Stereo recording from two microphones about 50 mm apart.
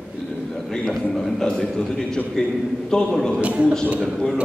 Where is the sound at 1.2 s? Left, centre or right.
Centre.